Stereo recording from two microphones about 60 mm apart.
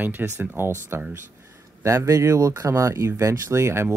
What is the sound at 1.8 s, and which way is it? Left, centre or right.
Speech, right.